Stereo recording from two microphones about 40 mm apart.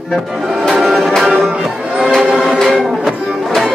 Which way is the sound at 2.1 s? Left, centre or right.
Centre.